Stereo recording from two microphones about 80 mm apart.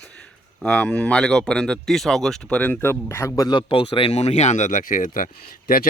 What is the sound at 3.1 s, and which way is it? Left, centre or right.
Speech, left.